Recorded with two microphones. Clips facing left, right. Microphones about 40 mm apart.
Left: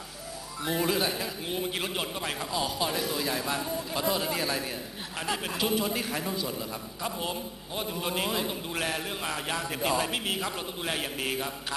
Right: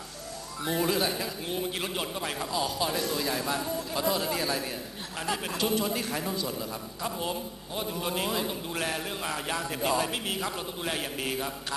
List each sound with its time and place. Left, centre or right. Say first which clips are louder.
0.7 s a man's voice: even; centre